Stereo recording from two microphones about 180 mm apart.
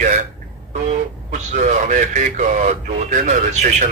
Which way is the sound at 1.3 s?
45° right (ahead or behind).